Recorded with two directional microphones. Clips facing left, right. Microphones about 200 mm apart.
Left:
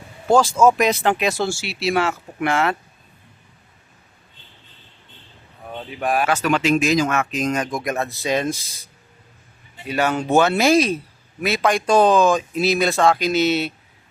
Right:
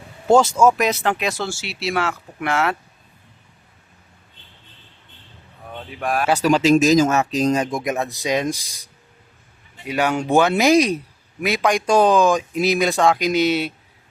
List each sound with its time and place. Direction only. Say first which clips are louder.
0.3 s speech: right 2 dB; 20° right (ahead or behind)
0.8 s speech: left 2 dB; centre (ahead or behind)
6.0 s speech: left 2 dB; centre (ahead or behind)
6.2 s speech: right 6 dB; 35° right (ahead or behind); by 13.7 s 10° right (ahead or behind)